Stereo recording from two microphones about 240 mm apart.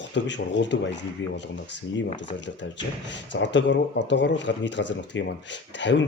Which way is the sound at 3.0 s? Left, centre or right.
Left.